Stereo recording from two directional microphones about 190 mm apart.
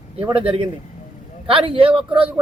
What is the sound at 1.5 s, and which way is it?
Speech, 25° right (ahead or behind).